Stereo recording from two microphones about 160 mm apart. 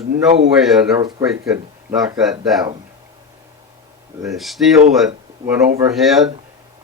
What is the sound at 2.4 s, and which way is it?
Speech, centre (ahead or behind).